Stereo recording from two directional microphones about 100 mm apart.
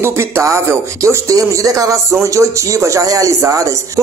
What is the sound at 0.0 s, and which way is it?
Speech, 30° right (ahead or behind).